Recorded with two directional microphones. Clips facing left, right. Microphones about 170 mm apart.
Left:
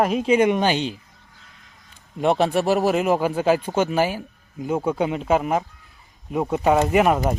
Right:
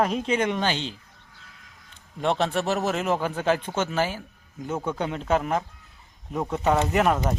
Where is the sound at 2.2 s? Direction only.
10° left (ahead or behind).